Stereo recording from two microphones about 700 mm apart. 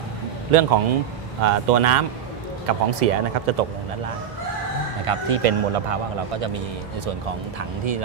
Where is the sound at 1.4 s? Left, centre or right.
Right.